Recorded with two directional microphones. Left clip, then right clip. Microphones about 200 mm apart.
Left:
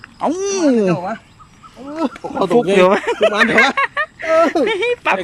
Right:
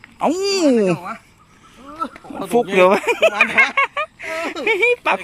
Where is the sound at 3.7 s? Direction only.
5° right (ahead or behind).